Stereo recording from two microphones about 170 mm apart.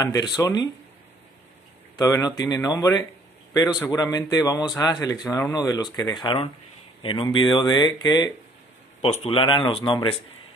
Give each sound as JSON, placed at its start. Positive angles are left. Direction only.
{"t": 0.0, "sound": "speech", "side_deg": 20}
{"t": 2.0, "sound": "speech", "side_deg": 20}